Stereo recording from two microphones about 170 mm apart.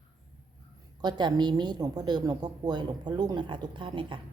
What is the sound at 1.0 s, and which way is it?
A woman's voice, 25° right (ahead or behind).